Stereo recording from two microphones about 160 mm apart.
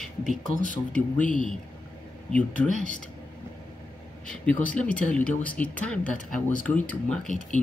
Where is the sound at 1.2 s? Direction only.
55° left (ahead or behind).